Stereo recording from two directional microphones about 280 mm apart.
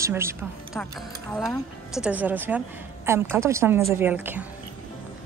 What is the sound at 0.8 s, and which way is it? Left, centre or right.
Speech, centre.